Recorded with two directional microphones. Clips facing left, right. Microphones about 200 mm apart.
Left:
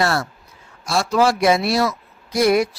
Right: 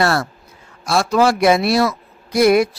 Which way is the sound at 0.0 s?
60° right (ahead or behind).